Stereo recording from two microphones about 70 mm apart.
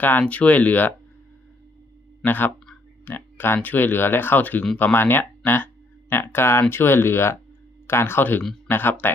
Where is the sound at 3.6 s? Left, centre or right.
Left.